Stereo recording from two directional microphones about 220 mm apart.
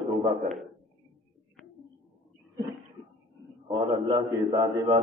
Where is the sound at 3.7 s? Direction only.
20° right (ahead or behind).